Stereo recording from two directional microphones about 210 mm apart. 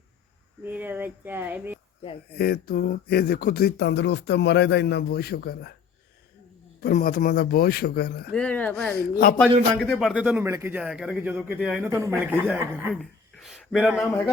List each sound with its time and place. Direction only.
0.6 s speech: 10° right (ahead or behind)
2.4 s speech: 45° left (ahead or behind)
6.8 s speech: 40° left (ahead or behind)
8.3 s speech: 5° left (ahead or behind)
9.0 s speech: 45° left (ahead or behind)
9.8 s speech: centre (ahead or behind)
12.9 s a sound: 5° left (ahead or behind)